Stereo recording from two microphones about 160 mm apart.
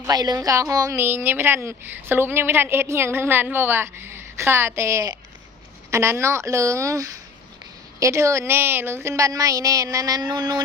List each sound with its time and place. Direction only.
0.0 s a woman's voice: 25° right (ahead or behind)